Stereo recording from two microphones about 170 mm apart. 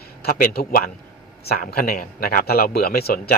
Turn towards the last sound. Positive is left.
turn(degrees=65)  # may be behind; listen again after turning